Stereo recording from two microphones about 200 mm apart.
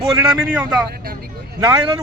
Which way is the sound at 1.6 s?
15° right (ahead or behind).